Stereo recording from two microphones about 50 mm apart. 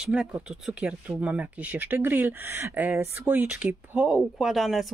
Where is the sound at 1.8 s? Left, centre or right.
Right.